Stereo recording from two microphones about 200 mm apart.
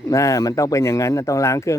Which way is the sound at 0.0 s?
15° left (ahead or behind).